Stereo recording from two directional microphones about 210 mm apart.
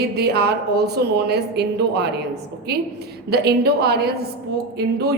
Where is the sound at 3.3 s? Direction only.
50° right (ahead or behind).